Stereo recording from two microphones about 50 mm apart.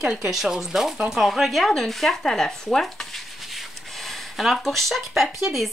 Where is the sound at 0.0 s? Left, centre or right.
Centre.